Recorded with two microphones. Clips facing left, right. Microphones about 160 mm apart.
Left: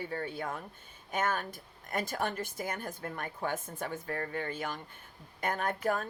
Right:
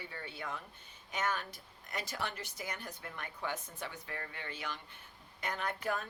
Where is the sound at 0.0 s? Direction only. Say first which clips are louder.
Left 8 dB; 45° left (ahead or behind).